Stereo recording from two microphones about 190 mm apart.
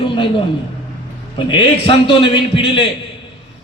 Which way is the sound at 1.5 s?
25° left (ahead or behind).